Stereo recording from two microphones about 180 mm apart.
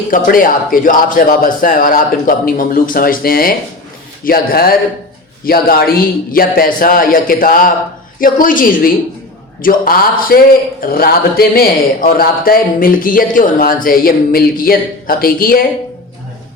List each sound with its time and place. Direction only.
0.1 s a man's voice: 50° left (ahead or behind)